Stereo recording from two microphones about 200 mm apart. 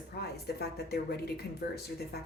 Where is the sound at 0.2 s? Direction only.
55° left (ahead or behind).